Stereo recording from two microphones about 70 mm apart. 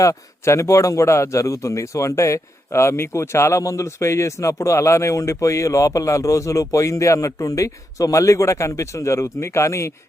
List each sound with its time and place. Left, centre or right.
0.0 s a man's voice: left